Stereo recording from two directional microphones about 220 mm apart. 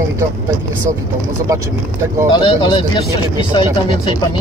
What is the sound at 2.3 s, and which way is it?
Speech, 20° left (ahead or behind).